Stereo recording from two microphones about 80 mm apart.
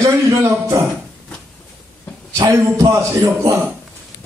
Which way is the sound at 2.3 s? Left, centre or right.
Right.